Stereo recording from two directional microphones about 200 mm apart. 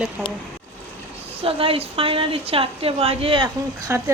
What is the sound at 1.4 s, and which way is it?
A woman's voice, 30° right (ahead or behind).